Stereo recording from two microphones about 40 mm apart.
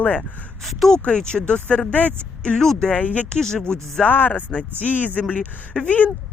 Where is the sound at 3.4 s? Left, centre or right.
Centre.